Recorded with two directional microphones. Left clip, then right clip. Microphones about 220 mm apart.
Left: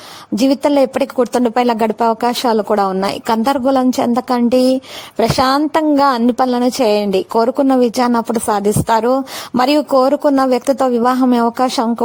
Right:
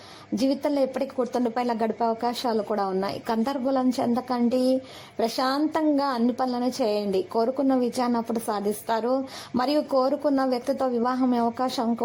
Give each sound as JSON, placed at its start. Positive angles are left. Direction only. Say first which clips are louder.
{"t": 0.3, "sound": "a woman's voice", "louder": "left 11 dB", "side_deg": 35}